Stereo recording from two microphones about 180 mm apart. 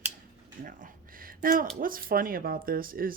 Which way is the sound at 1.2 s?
50° right (ahead or behind).